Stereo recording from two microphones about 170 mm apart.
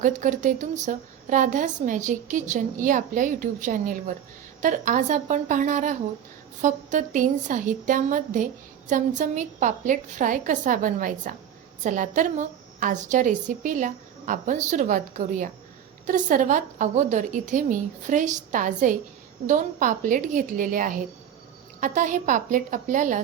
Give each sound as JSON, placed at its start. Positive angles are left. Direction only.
{"t": 0.0, "sound": "a woman's voice", "side_deg": -50}